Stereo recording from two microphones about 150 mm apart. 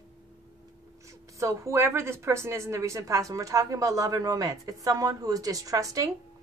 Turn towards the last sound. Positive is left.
turn(degrees=-20)  # may be behind; listen again after turning